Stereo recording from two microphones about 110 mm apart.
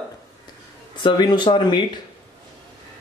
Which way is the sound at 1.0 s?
40° left (ahead or behind).